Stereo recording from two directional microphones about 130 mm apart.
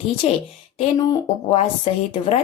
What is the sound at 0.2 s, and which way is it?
Speech, 55° left (ahead or behind).